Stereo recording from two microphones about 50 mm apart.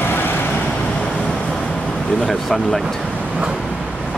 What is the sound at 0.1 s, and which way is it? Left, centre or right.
Vehicle, left.